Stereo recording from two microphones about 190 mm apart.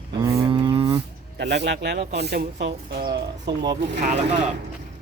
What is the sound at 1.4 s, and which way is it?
Speech, 65° right (ahead or behind).